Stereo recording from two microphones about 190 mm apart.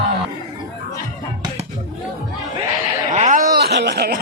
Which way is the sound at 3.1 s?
40° right (ahead or behind).